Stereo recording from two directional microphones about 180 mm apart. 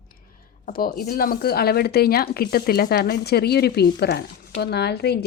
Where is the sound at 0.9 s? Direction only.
55° left (ahead or behind).